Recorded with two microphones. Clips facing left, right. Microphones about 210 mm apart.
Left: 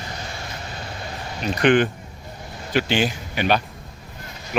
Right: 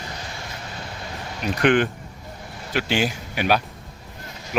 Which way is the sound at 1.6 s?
Centre (ahead or behind).